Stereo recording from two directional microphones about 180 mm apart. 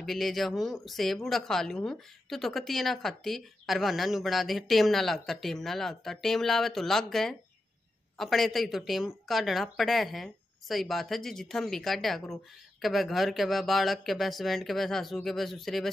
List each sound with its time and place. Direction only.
0.0 s speech: centre (ahead or behind)